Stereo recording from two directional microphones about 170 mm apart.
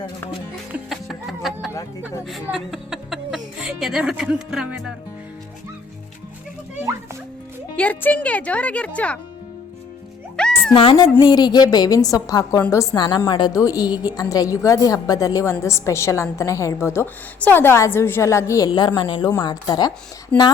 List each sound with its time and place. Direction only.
0.9 s music: centre (ahead or behind)
2.2 s speech: centre (ahead or behind)
7.8 s a woman's voice: 10° left (ahead or behind)
10.3 s music: 5° left (ahead or behind)
10.8 s a woman's voice: 30° left (ahead or behind)
20.3 s a woman's voice: 10° left (ahead or behind)